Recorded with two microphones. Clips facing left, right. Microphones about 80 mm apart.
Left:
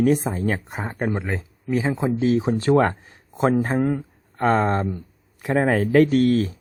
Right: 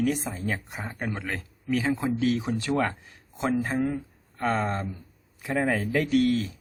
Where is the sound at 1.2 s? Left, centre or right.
Left.